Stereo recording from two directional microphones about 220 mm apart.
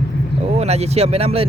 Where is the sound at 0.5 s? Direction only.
30° right (ahead or behind).